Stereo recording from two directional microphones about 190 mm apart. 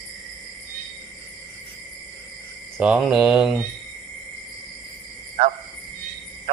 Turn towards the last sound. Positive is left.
turn(degrees=-35)  # may be behind; listen again after turning